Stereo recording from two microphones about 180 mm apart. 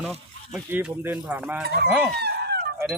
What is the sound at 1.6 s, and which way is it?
Speech, 65° right (ahead or behind).